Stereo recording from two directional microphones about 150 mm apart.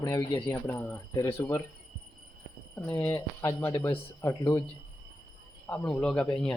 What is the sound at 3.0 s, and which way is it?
Speech, 15° left (ahead or behind).